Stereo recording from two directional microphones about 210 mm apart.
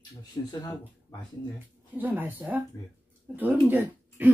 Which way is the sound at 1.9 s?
10° right (ahead or behind).